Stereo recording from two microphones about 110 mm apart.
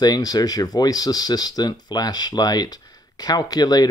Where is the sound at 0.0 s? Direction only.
35° left (ahead or behind).